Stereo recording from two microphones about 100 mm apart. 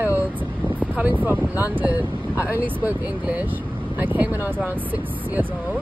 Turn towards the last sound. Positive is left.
turn(degrees=-15)  # may be behind; listen again after turning